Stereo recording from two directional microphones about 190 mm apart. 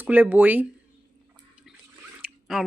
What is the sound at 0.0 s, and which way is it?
Speech, 10° right (ahead or behind).